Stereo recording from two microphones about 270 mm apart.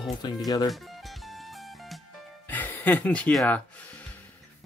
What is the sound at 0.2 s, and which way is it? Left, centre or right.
Speech, centre.